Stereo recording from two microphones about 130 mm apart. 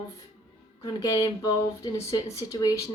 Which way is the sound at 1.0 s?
30° left (ahead or behind).